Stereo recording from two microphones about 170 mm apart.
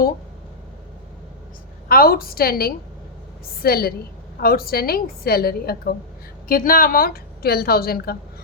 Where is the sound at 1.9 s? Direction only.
60° left (ahead or behind).